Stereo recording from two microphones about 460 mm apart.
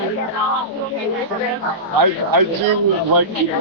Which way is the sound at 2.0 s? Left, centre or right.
Right.